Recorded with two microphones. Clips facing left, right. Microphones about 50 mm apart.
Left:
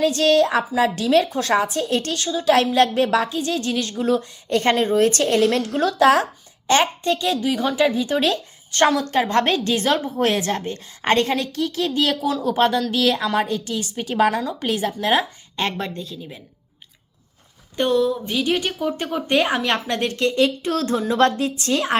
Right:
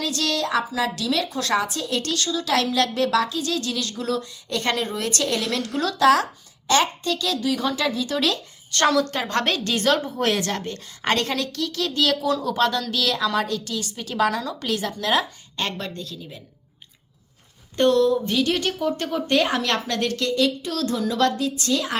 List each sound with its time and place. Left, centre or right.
0.0 s a woman's voice: left; by 12.5 s centre
12.5 s speech: left
17.7 s speech: centre; by 21.9 s left